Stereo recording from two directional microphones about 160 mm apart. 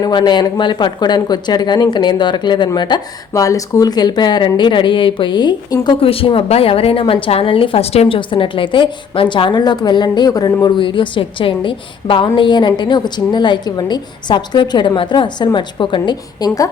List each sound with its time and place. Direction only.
0.0 s speech: 25° left (ahead or behind)